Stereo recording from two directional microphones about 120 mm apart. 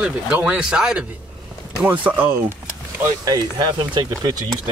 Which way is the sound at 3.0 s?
35° right (ahead or behind).